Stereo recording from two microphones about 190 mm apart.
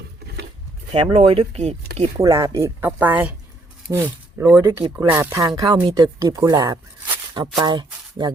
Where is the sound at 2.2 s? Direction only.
15° right (ahead or behind).